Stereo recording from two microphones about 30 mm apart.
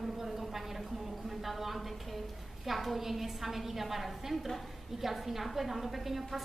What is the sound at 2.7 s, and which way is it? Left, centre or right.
A woman's voice, centre.